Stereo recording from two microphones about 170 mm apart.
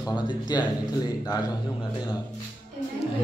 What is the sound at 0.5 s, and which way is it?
Speech, 25° left (ahead or behind).